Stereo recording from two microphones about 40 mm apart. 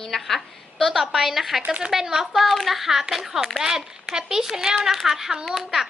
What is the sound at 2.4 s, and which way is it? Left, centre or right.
A woman's voice, centre.